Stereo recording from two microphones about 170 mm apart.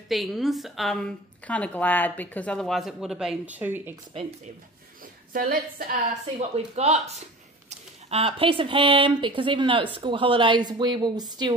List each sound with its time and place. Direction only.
0.1 s a woman's voice: centre (ahead or behind)
4.1 s speech: 35° right (ahead or behind)
5.3 s a woman's voice: 60° right (ahead or behind)
6.5 s speech: 40° right (ahead or behind)